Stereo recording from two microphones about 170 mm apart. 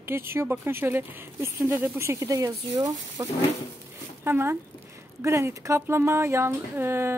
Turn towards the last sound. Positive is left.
turn(degrees=-15)  # may be behind; listen again after turning